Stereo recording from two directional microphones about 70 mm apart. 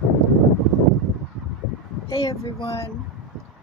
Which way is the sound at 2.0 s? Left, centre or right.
Left.